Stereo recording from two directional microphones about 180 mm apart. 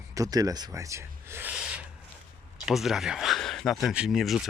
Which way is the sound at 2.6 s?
Centre (ahead or behind).